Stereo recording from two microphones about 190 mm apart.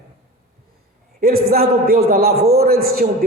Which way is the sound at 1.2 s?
55° right (ahead or behind).